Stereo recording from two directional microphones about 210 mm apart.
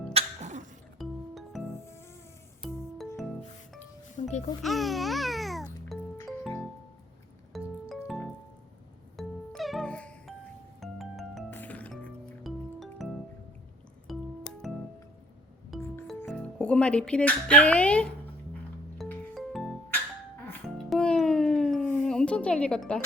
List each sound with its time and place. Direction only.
0.1 s music: 30° right (ahead or behind)
0.9 s music: centre (ahead or behind)
1.8 s music: 10° left (ahead or behind)
2.6 s music: centre (ahead or behind)
4.2 s music: 35° left (ahead or behind)
4.6 s music: centre (ahead or behind)
6.1 s music: 10° left (ahead or behind)
7.5 s music: centre (ahead or behind)